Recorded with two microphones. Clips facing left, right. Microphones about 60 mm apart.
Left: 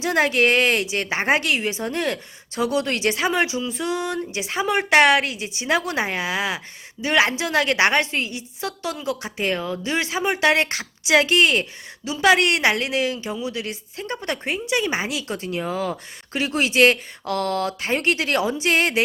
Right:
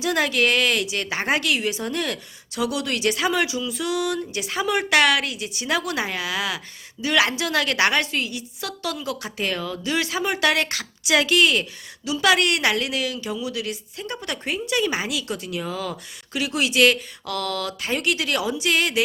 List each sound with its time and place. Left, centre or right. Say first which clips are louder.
0.0 s a woman's voice: left 2 dB; left